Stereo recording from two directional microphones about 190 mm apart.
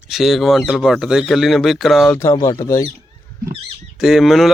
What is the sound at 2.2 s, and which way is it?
Speech, 15° left (ahead or behind).